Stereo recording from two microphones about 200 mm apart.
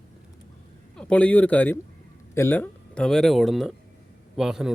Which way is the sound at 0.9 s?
5° left (ahead or behind).